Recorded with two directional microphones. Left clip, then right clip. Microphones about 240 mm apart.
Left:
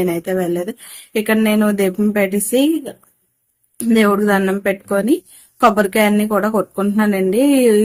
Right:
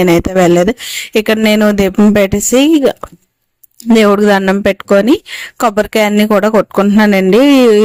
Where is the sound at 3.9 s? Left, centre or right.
Right.